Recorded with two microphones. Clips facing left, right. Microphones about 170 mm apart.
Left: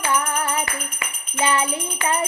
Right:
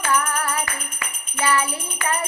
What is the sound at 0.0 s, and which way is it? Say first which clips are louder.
Music: even; 20° left (ahead or behind).